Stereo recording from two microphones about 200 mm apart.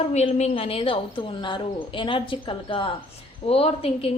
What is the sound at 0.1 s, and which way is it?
A woman's voice, 35° left (ahead or behind).